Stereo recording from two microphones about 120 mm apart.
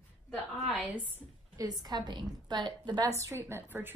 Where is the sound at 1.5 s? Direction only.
30° right (ahead or behind).